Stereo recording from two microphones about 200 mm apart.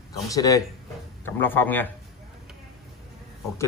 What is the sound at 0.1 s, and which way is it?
Speech, 15° left (ahead or behind).